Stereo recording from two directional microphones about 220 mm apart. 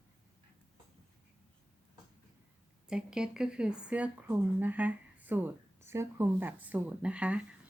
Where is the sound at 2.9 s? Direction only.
5° right (ahead or behind).